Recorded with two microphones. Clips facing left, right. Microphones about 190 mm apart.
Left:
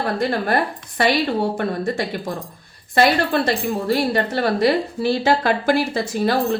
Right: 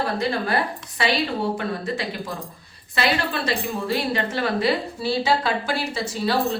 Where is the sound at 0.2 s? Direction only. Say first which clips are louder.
Left 3 dB; 50° left (ahead or behind).